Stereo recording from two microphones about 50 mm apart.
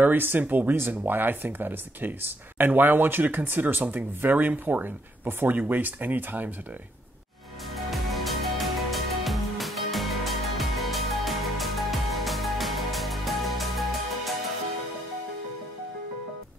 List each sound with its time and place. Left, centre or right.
0.0 s speech: right
7.7 s music: centre